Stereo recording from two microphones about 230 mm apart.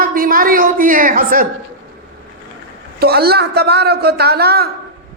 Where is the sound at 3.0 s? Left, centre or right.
Right.